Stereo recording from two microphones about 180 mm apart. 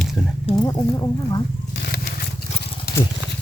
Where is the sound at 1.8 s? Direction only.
65° left (ahead or behind).